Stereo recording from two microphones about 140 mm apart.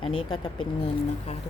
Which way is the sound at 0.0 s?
35° left (ahead or behind).